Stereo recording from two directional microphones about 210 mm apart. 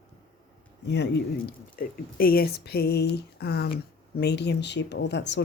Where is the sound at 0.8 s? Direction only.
55° left (ahead or behind).